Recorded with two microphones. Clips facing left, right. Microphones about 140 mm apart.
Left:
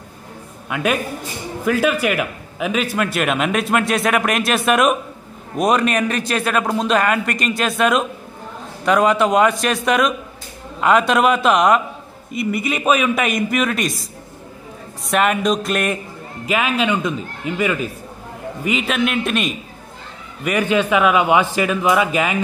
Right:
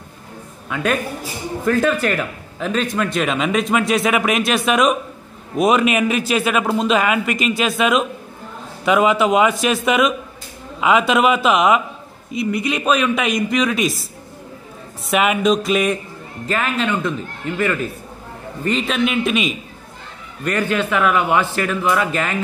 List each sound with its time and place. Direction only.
0.7 s a man's voice: 10° left (ahead or behind)
15.0 s a man's voice: 5° right (ahead or behind)
16.4 s a man's voice: 10° left (ahead or behind)
20.4 s a man's voice: 15° left (ahead or behind)